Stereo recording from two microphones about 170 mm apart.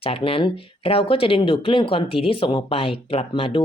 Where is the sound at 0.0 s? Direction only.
35° left (ahead or behind).